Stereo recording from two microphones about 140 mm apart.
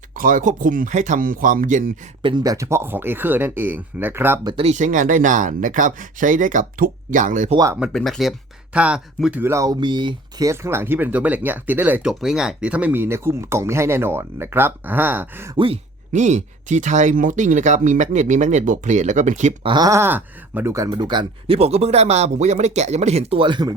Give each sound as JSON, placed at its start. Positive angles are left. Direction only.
{"t": 0.2, "sound": "speech", "side_deg": -70}
{"t": 2.2, "sound": "speech", "side_deg": -30}
{"t": 4.4, "sound": "speech", "side_deg": -40}
{"t": 4.7, "sound": "speech", "side_deg": -60}
{"t": 7.5, "sound": "speech", "side_deg": -25}
{"t": 7.9, "sound": "speech", "side_deg": 0}
{"t": 9.8, "sound": "speech", "side_deg": -35}
{"t": 15.5, "sound": "speech", "side_deg": -40}
{"t": 16.1, "sound": "speech", "side_deg": -60}
{"t": 19.6, "sound": "speech", "side_deg": -30}